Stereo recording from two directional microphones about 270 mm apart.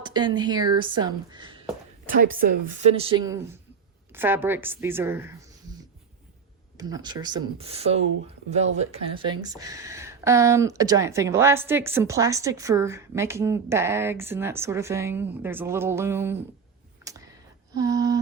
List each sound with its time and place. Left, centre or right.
0.0 s speech: centre
2.0 s speech: right; by 5.4 s centre
6.7 s speech: centre
17.0 s a sound: centre